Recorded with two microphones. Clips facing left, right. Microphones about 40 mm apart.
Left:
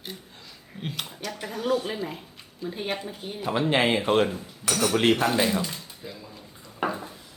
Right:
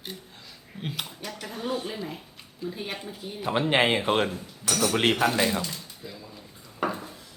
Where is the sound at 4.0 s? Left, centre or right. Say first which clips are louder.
Left 2 dB; centre.